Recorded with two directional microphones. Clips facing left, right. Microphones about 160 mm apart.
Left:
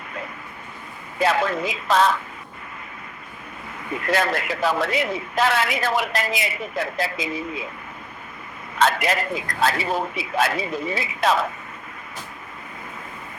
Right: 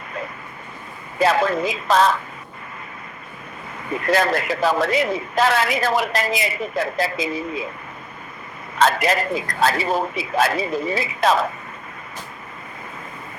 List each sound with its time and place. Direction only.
1.2 s a man's voice: 40° right (ahead or behind)
4.0 s a man's voice: 40° right (ahead or behind)
8.8 s a man's voice: 40° right (ahead or behind)